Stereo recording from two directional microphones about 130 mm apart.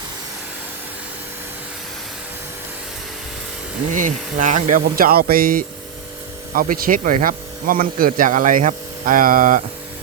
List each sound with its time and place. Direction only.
3.9 s speech: 85° right